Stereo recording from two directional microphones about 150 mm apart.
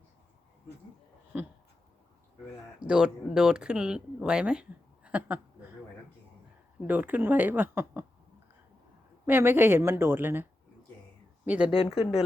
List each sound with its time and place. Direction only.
1.3 s speech: 10° right (ahead or behind)
2.7 s speech: 5° right (ahead or behind)
5.0 s a sound: 10° right (ahead or behind)
6.8 s speech: 10° right (ahead or behind)
9.2 s speech: 15° right (ahead or behind)
11.4 s speech: 10° right (ahead or behind)
11.7 s speech: 40° left (ahead or behind)